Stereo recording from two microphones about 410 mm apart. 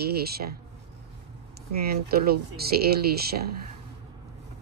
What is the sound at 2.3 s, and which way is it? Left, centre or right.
Speech, right.